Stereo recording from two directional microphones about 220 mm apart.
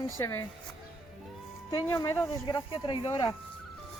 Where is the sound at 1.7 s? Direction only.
15° left (ahead or behind).